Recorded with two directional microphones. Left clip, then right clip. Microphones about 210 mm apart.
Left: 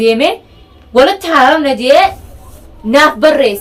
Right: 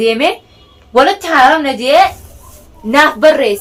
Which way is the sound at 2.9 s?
15° right (ahead or behind).